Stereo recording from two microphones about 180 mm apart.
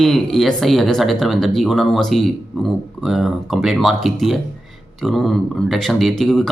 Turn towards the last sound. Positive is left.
turn(degrees=0)  # may be behind; listen again after turning